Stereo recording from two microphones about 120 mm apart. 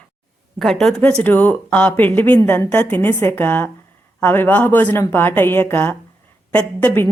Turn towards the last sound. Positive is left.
turn(degrees=15)  # may be behind; listen again after turning